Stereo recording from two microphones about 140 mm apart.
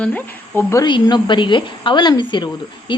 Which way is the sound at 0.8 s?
35° left (ahead or behind).